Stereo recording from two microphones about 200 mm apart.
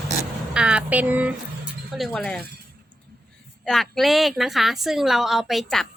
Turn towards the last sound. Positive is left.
turn(degrees=0)  # may be behind; listen again after turning